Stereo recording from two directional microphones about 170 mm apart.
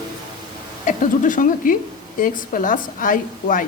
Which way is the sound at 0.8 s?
50° left (ahead or behind).